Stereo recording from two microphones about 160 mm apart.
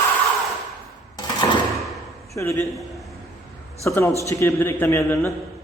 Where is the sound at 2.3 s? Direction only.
15° left (ahead or behind).